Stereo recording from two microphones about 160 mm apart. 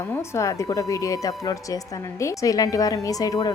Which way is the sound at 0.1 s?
15° left (ahead or behind).